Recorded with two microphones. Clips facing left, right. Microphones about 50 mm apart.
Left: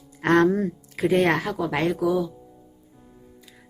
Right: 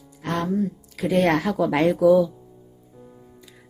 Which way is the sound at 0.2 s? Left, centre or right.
Left.